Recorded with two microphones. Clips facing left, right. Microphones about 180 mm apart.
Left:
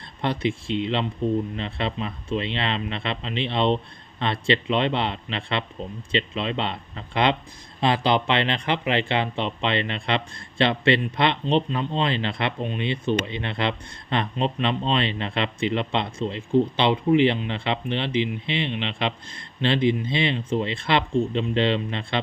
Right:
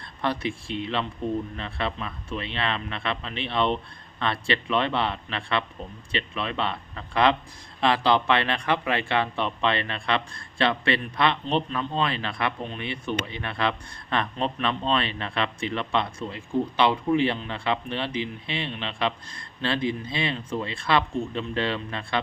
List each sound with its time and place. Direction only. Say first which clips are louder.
0.2 s speech: left 3 dB; 20° left (ahead or behind)